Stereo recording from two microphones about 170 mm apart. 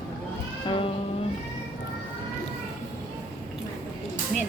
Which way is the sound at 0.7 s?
30° left (ahead or behind).